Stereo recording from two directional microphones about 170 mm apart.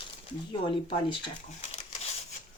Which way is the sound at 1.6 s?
45° left (ahead or behind).